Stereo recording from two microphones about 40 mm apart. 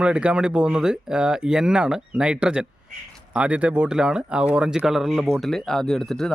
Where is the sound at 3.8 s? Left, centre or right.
Centre.